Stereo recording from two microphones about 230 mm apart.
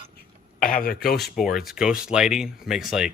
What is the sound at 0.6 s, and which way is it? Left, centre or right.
Speech, left.